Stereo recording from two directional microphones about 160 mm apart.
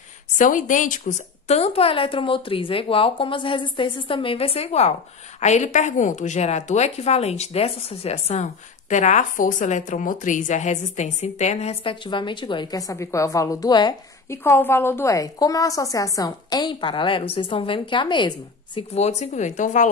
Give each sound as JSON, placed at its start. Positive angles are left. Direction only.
{"t": 0.4, "sound": "a woman's voice", "side_deg": 55}
{"t": 14.4, "sound": "a woman's voice", "side_deg": 15}
{"t": 18.8, "sound": "a woman's voice", "side_deg": 45}